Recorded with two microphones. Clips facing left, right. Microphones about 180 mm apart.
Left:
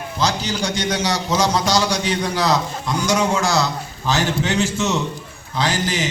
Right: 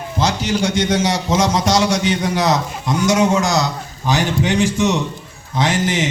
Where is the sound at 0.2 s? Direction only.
25° right (ahead or behind).